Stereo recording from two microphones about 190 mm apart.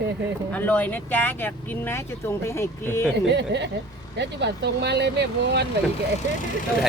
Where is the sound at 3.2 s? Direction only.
65° right (ahead or behind).